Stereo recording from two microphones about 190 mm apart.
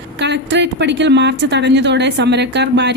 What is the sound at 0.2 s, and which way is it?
Speech, 65° right (ahead or behind).